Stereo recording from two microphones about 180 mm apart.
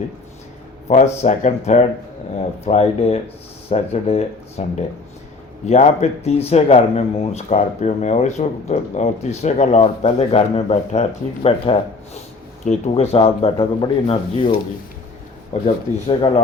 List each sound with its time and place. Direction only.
0.9 s speech: 40° left (ahead or behind)
5.6 s speech: 35° left (ahead or behind)
15.6 s speech: 30° left (ahead or behind)